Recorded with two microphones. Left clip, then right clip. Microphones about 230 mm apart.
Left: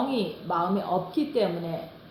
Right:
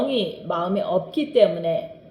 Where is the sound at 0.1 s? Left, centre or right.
Right.